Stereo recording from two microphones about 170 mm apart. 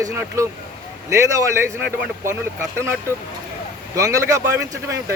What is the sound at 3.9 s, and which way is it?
A man's voice, 20° right (ahead or behind).